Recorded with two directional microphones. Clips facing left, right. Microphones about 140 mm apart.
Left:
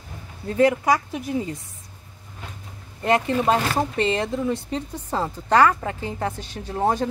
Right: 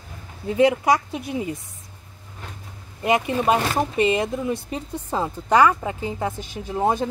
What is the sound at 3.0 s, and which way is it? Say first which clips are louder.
Speech: even; 15° right (ahead or behind).